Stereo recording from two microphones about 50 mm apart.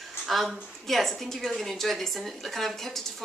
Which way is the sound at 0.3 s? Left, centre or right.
Centre.